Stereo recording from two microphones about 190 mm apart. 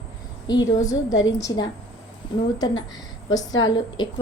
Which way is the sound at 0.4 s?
20° left (ahead or behind).